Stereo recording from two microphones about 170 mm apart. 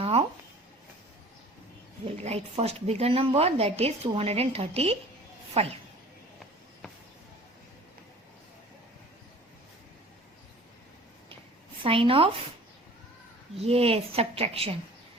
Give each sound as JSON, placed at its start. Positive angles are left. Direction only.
{"t": 0.0, "sound": "a sound", "side_deg": -35}
{"t": 2.0, "sound": "a woman's voice", "side_deg": -35}
{"t": 11.8, "sound": "a woman's voice", "side_deg": -30}
{"t": 13.6, "sound": "a woman's voice", "side_deg": -35}